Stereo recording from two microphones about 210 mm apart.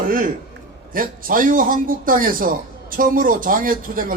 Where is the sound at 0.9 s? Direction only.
40° right (ahead or behind).